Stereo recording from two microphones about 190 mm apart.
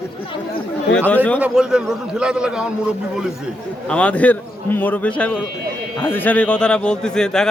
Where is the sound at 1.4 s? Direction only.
5° right (ahead or behind).